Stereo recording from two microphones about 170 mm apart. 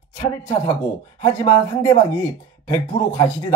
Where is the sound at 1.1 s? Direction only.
25° left (ahead or behind).